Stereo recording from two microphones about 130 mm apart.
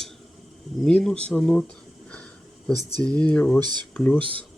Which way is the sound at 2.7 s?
25° right (ahead or behind).